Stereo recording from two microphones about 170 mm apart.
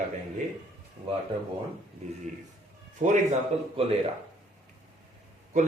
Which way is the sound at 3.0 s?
50° right (ahead or behind).